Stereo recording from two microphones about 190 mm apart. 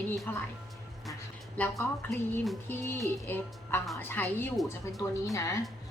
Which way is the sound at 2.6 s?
10° left (ahead or behind).